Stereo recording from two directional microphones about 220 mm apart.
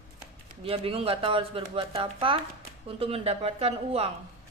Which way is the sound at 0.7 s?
25° right (ahead or behind).